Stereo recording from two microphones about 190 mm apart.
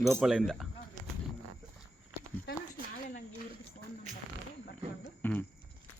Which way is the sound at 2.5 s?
55° left (ahead or behind).